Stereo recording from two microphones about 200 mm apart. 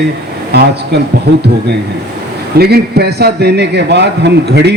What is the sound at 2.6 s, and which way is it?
A man's voice, 50° right (ahead or behind).